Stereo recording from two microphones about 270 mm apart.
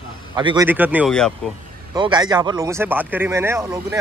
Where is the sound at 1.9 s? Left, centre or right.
Centre.